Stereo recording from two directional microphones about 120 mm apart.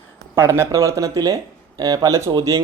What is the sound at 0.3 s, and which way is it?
Speech, 20° right (ahead or behind).